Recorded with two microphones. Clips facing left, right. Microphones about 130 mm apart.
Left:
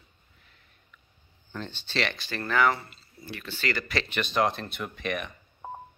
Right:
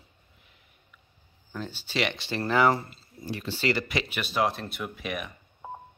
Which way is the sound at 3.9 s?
10° right (ahead or behind).